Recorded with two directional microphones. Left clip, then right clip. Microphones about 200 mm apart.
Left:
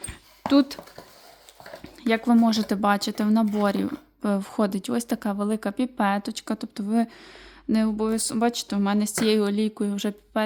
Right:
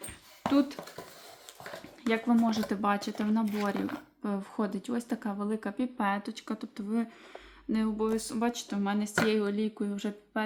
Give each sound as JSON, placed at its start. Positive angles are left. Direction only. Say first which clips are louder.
{"t": 2.0, "sound": "speech", "louder": "left 7 dB", "side_deg": 50}